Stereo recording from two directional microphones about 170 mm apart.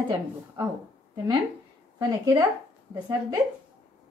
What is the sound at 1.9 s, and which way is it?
Speech, 25° right (ahead or behind).